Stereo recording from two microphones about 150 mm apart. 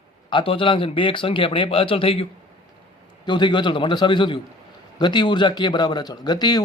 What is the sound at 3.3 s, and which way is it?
A man's voice, 30° left (ahead or behind).